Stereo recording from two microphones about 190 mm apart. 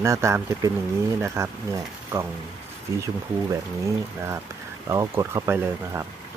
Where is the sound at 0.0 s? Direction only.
15° right (ahead or behind).